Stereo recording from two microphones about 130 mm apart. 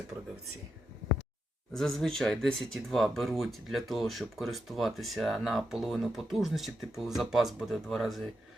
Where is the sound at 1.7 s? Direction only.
5° left (ahead or behind).